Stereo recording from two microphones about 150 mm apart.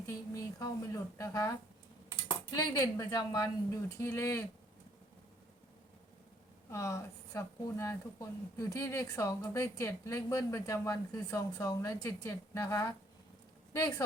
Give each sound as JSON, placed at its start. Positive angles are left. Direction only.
{"t": 0.1, "sound": "a woman's voice", "side_deg": 20}
{"t": 6.7, "sound": "speech", "side_deg": 20}